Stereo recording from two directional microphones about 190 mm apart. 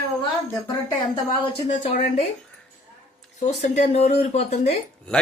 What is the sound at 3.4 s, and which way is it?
Speech, 40° left (ahead or behind).